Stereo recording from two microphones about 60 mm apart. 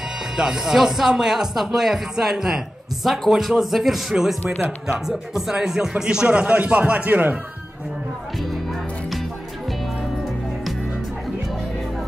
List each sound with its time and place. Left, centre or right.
0.4 s speech: centre; by 7.3 s right